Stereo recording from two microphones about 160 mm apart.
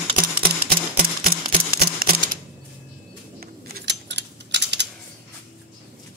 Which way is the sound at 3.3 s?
75° right (ahead or behind).